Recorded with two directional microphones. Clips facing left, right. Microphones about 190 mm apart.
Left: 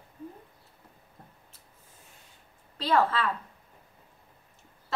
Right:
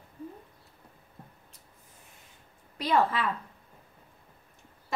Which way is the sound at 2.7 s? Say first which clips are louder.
Left 1 dB; 15° right (ahead or behind).